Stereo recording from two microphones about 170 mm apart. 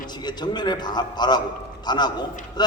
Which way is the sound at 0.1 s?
25° left (ahead or behind).